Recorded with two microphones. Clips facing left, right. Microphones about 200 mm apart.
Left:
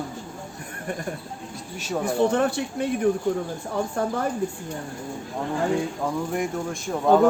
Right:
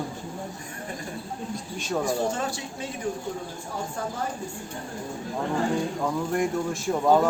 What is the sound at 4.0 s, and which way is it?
Speech, 60° left (ahead or behind).